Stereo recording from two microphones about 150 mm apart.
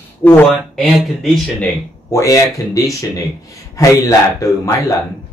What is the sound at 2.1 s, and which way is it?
Speech, 20° left (ahead or behind).